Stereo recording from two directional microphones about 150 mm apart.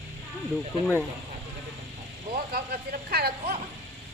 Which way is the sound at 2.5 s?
85° right.